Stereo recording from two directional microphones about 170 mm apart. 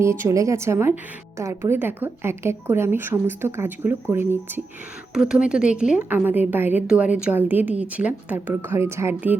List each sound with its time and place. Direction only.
0.0 s a woman's voice: 15° right (ahead or behind)